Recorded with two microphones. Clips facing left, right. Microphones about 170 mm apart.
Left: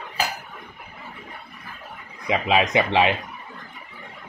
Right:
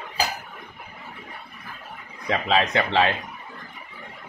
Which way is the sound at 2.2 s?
10° left (ahead or behind).